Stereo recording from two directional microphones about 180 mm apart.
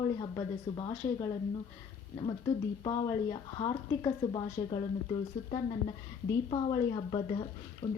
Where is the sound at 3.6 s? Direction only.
25° left (ahead or behind).